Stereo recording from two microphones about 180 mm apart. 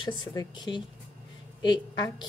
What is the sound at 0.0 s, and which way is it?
A woman's voice, 20° left (ahead or behind).